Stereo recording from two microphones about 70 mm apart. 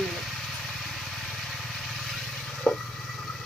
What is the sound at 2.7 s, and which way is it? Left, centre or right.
Vehicle, centre.